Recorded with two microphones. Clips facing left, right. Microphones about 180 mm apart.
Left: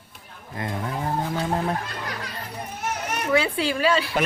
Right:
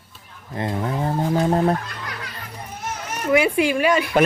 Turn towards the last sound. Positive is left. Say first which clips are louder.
# right 4 dB
turn(degrees=-15)  # may be behind; listen again after turning